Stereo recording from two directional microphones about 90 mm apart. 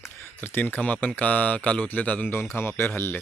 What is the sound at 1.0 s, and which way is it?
Speech, 15° left (ahead or behind).